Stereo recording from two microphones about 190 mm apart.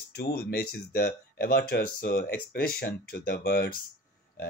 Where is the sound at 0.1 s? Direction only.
55° left (ahead or behind).